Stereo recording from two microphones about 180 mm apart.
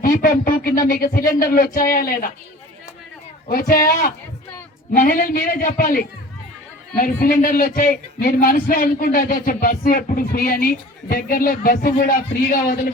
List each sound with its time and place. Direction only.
0.0 s speech: 50° left (ahead or behind)
3.5 s speech: 50° left (ahead or behind)
4.9 s speech: 50° left (ahead or behind)